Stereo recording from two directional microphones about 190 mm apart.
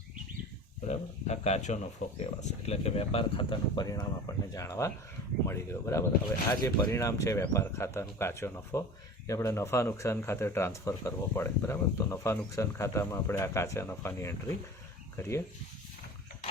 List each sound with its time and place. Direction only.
0.9 s speech: 35° left (ahead or behind); by 14.5 s 15° left (ahead or behind)